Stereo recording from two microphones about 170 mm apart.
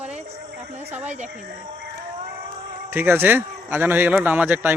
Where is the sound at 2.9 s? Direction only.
10° right (ahead or behind).